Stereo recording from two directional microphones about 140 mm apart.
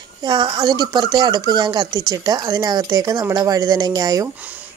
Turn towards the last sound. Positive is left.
turn(degrees=-25)  # may be behind; listen again after turning